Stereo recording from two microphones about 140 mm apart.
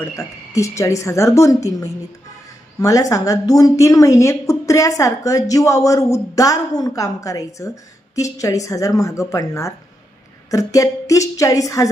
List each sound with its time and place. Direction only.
0.0 s a woman's voice: 20° left (ahead or behind)